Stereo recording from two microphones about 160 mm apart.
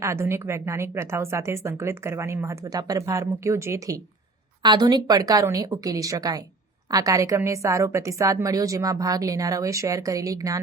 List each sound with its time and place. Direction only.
0.0 s a woman's voice: 15° right (ahead or behind)